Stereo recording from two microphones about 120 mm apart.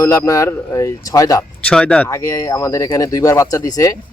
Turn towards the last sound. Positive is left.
turn(degrees=30)  # may be behind; listen again after turning